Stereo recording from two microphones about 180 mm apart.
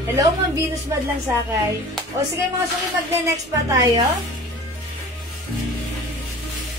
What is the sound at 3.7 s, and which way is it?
Speech, 20° right (ahead or behind).